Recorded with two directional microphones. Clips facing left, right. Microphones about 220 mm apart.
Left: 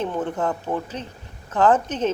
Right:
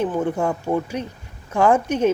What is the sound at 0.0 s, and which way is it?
Speech, 10° right (ahead or behind).